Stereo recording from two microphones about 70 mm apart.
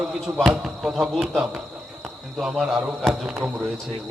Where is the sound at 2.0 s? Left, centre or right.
Centre.